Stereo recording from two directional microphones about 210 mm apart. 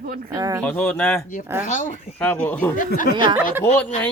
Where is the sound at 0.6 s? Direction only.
5° left (ahead or behind).